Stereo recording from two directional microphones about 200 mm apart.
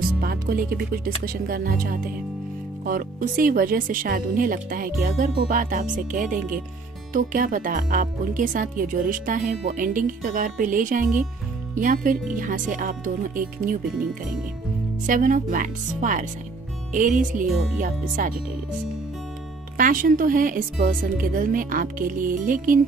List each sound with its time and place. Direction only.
0.2 s speech: 50° right (ahead or behind)
15.0 s speech: 40° right (ahead or behind)
19.8 s speech: 45° right (ahead or behind)